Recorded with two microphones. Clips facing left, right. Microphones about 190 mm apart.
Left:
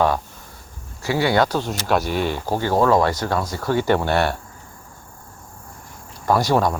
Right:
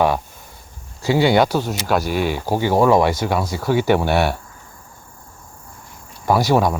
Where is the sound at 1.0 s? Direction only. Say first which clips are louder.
Right 4 dB; 25° right (ahead or behind).